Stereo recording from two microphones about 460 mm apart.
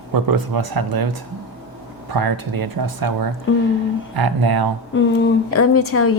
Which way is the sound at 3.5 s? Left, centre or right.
Left.